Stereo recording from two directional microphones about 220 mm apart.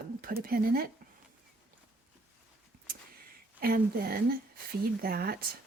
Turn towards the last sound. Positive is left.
turn(degrees=-45)  # may be behind; listen again after turning